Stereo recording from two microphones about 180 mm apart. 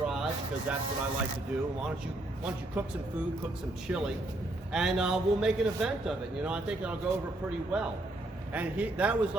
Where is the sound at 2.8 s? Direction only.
10° right (ahead or behind).